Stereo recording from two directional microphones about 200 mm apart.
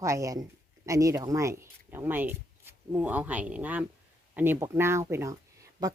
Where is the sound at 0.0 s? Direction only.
15° right (ahead or behind).